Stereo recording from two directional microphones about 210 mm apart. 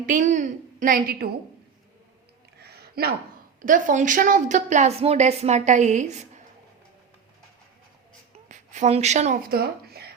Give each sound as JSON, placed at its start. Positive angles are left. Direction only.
{"t": 0.0, "sound": "a woman's voice", "side_deg": -40}
{"t": 2.6, "sound": "a sound", "side_deg": -50}
{"t": 3.6, "sound": "a woman's voice", "side_deg": -40}
{"t": 8.4, "sound": "speech", "side_deg": -35}